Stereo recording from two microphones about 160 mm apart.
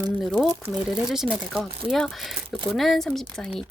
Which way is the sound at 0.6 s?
5° right (ahead or behind).